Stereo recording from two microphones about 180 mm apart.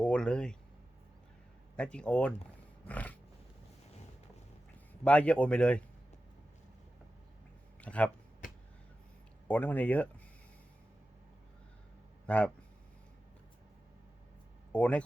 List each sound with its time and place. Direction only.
0.0 s speech: 5° left (ahead or behind)
1.7 s a man's voice: 5° left (ahead or behind)
5.0 s a man's voice: 5° left (ahead or behind)
7.8 s speech: 5° left (ahead or behind)
8.4 s vehicle: 50° left (ahead or behind)
9.5 s a man's voice: 10° left (ahead or behind)
12.2 s speech: 5° left (ahead or behind)
14.7 s speech: 5° left (ahead or behind)